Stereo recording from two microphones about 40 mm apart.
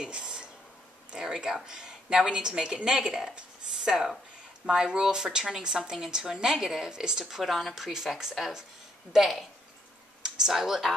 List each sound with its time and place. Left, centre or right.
0.0 s a sound: right
1.1 s a woman's voice: centre
3.1 s a woman's voice: centre
10.5 s speech: centre